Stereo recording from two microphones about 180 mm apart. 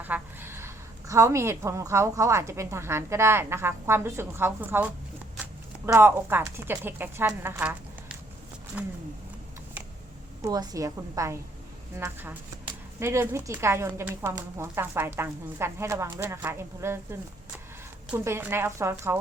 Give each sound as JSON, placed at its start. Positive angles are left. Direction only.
{"t": 0.0, "sound": "a woman's voice", "side_deg": -10}
{"t": 10.4, "sound": "a woman's voice", "side_deg": -20}